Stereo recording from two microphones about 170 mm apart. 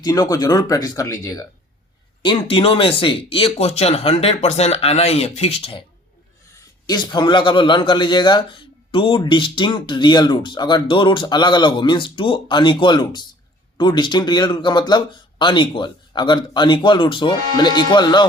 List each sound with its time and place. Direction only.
0.0 s a man's voice: 20° left (ahead or behind)
2.2 s speech: 30° left (ahead or behind)
6.8 s a man's voice: 25° left (ahead or behind)